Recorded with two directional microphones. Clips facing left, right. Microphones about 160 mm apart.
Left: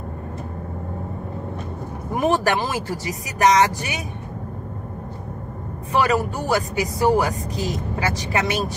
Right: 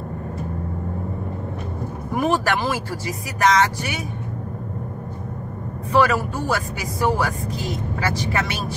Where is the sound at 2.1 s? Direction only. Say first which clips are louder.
Left 1 dB; 20° left (ahead or behind).